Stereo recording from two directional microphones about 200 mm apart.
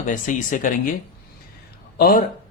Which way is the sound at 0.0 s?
40° left (ahead or behind).